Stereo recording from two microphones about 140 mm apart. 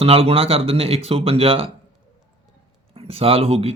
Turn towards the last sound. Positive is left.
turn(degrees=-45)  # may be behind; listen again after turning